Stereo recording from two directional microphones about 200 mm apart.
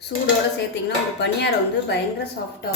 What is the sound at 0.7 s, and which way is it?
Speech, 60° left (ahead or behind).